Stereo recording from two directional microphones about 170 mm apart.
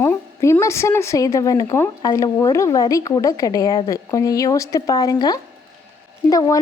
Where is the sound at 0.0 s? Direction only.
15° left (ahead or behind).